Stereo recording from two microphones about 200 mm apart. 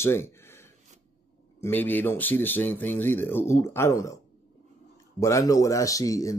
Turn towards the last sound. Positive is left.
turn(degrees=15)  # may be behind; listen again after turning